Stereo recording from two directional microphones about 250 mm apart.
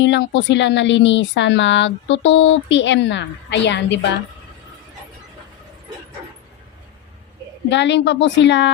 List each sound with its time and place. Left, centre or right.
0.0 s speech: left
7.7 s speech: left